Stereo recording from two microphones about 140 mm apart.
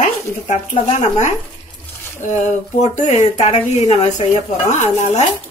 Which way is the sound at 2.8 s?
55° left (ahead or behind).